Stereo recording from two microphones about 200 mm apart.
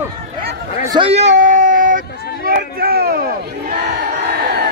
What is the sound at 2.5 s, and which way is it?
Battle cry, 45° right (ahead or behind).